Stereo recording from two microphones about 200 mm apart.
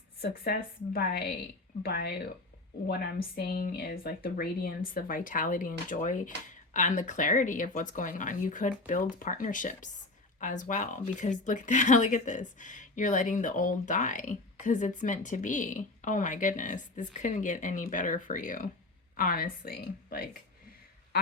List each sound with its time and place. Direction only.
0.2 s speech: 50° left (ahead or behind)